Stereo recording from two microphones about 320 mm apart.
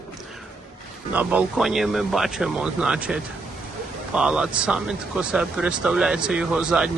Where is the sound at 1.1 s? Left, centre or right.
Centre.